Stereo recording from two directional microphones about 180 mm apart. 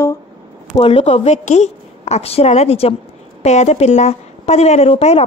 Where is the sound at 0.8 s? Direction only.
35° left (ahead or behind).